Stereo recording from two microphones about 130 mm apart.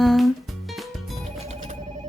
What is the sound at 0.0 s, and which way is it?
Music, centre (ahead or behind).